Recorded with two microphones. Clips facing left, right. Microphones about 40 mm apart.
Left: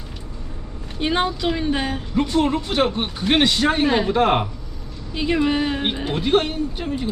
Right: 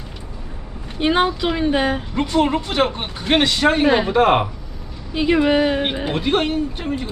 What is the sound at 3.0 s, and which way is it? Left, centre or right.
Speech, centre.